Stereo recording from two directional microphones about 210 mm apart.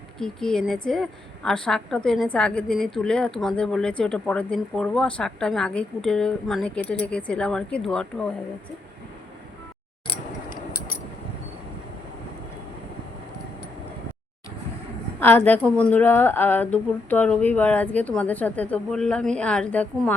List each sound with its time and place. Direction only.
0.2 s a woman's voice: centre (ahead or behind)
10.5 s a sound: 45° left (ahead or behind)
15.2 s a woman's voice: 10° left (ahead or behind)